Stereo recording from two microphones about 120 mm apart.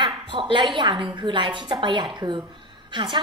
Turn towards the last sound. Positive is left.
turn(degrees=-40)  # may be behind; listen again after turning